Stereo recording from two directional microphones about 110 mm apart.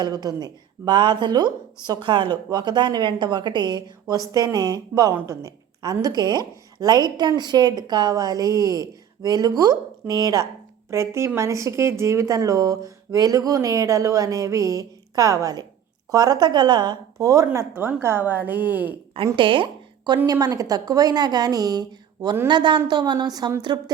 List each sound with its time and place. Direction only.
0.0 s a woman's voice: 35° right (ahead or behind); by 18.9 s 15° right (ahead or behind)
19.1 s a woman's voice: 55° right (ahead or behind)
20.2 s a woman's voice: 35° right (ahead or behind)